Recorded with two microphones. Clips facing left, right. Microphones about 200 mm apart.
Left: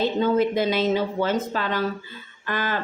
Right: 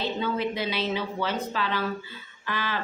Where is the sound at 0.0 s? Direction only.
45° left (ahead or behind).